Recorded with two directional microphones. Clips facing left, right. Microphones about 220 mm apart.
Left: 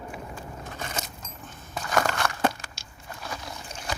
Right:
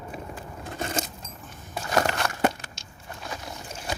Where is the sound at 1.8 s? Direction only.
25° right (ahead or behind).